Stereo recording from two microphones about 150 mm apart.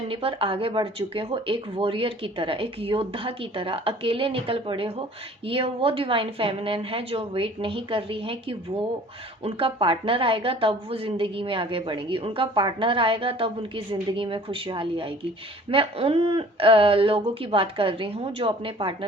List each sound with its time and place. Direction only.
0.1 s a woman's voice: 35° right (ahead or behind)